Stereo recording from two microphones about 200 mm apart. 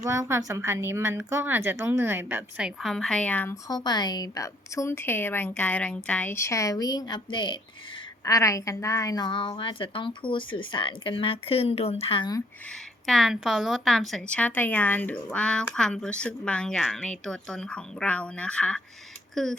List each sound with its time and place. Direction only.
0.0 s a woman's voice: 15° right (ahead or behind); by 12.4 s 25° left (ahead or behind)
13.1 s a woman's voice: centre (ahead or behind)